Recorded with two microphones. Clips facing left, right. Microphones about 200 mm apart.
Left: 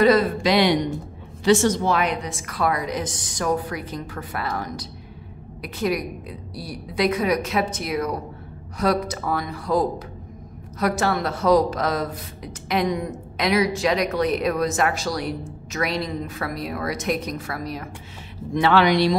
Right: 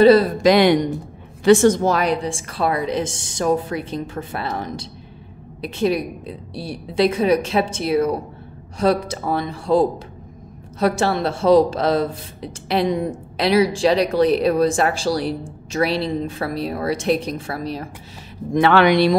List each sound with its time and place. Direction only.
0.0 s speech: 30° right (ahead or behind)
0.4 s speech: 50° right (ahead or behind); by 17.8 s 30° right (ahead or behind)
18.5 s speech: 55° right (ahead or behind)